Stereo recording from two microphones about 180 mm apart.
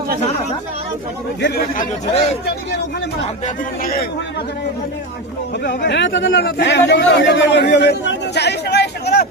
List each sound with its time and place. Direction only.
1.4 s speech: 65° left (ahead or behind)
3.4 s speech: 55° left (ahead or behind)
5.6 s speech: 70° left (ahead or behind)